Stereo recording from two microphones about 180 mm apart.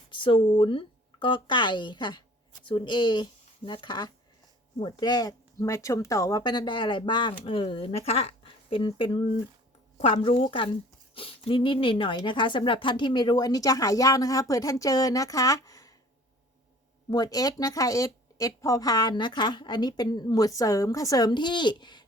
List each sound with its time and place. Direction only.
0.1 s a woman's voice: 30° left (ahead or behind)
17.1 s speech: 20° left (ahead or behind)